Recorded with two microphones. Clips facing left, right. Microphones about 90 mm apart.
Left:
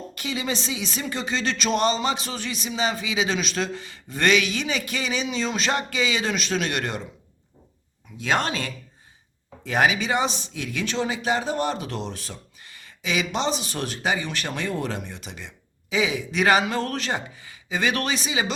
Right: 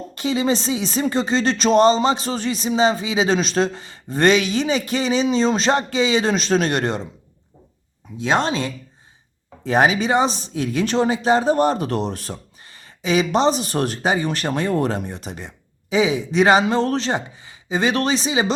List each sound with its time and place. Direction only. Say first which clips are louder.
0.1 s speech: right 9 dB; 30° right (ahead or behind)
8.2 s speech: right 5 dB; 25° right (ahead or behind); by 12.4 s 50° right (ahead or behind)
12.6 s speech: right 7 dB; 35° right (ahead or behind)